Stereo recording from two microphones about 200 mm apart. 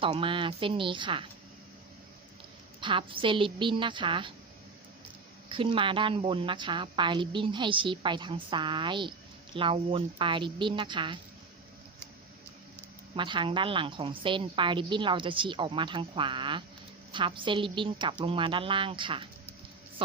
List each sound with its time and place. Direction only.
0.0 s a woman's voice: 25° right (ahead or behind)
2.8 s a woman's voice: 25° right (ahead or behind)
5.5 s a woman's voice: 25° right (ahead or behind)
13.1 s a woman's voice: 25° right (ahead or behind)